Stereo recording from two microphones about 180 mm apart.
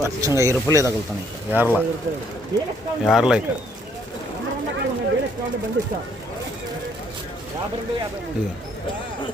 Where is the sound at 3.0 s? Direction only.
Centre (ahead or behind).